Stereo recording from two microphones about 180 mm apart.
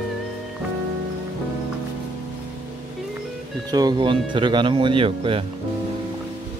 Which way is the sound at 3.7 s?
25° right (ahead or behind).